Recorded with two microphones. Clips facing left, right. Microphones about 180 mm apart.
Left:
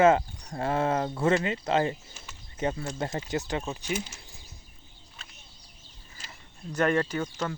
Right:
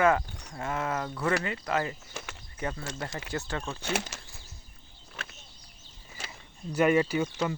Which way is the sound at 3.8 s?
80° right.